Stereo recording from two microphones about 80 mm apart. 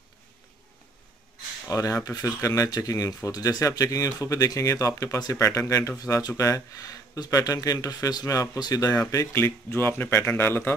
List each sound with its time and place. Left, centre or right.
1.7 s speech: left